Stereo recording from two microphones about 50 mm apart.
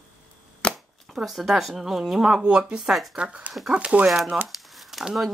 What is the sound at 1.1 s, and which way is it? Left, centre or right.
A woman's voice, centre.